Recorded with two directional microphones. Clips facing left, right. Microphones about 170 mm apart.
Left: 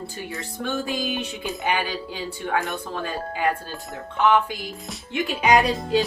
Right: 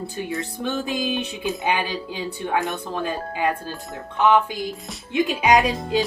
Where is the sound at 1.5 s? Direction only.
20° right (ahead or behind).